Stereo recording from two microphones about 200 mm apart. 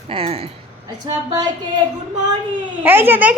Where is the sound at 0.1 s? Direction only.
30° right (ahead or behind).